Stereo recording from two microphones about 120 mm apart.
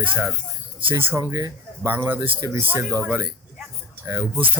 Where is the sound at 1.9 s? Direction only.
15° right (ahead or behind).